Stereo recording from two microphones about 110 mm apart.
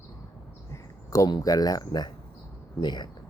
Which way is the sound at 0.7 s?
30° left (ahead or behind).